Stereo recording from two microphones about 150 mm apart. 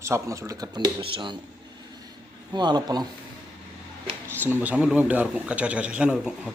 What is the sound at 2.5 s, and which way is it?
Speech, 30° right (ahead or behind).